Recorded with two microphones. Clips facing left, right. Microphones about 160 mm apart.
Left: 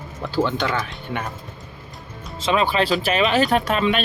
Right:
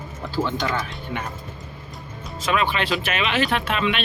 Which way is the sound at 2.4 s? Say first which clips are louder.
Left 3 dB; 30° left (ahead or behind).